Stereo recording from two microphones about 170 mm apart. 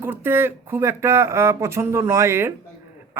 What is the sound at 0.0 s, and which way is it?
Speech, 10° right (ahead or behind).